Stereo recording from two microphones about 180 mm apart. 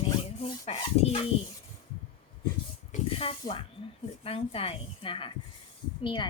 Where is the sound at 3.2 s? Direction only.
30° left (ahead or behind).